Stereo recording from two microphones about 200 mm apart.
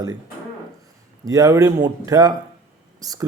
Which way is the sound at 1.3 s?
20° right (ahead or behind).